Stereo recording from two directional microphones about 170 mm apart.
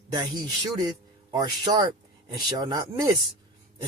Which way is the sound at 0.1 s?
25° right (ahead or behind).